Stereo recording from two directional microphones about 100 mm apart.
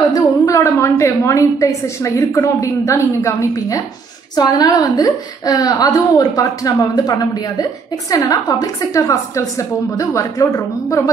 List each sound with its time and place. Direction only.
0.1 s a woman's voice: 30° left (ahead or behind)